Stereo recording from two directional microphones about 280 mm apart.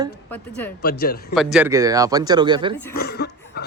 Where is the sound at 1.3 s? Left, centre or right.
Centre.